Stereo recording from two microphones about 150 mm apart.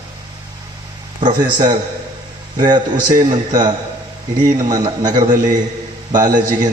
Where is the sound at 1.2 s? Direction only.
35° right (ahead or behind).